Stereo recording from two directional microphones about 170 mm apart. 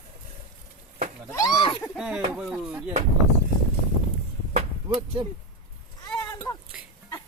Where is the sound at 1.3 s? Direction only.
20° left (ahead or behind).